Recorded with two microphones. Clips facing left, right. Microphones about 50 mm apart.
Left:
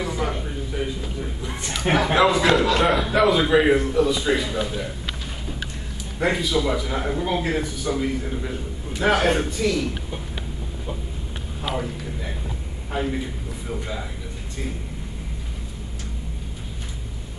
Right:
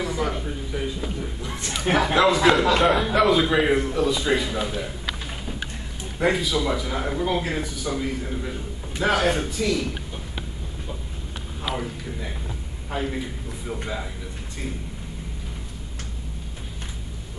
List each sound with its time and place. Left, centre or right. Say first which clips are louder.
0.0 s a sound: even; centre
1.4 s speech: left 2 dB; left
2.4 s a man's voice: right 1 dB; centre
6.1 s a man's voice: even; centre
11.7 s a man's voice: left 2 dB; centre